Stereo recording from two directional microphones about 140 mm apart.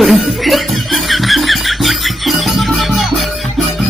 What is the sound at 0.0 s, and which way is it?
Music, centre (ahead or behind).